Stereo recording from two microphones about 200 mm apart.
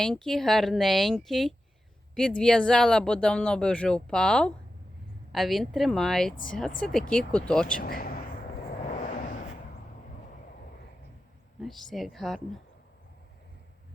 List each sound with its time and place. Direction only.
0.0 s speech: centre (ahead or behind)
7.8 s speech: 45° left (ahead or behind)
8.8 s vehicle: 35° left (ahead or behind)
11.6 s speech: centre (ahead or behind)